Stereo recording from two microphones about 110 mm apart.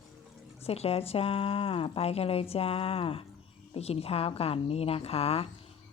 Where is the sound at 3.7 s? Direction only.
70° left (ahead or behind).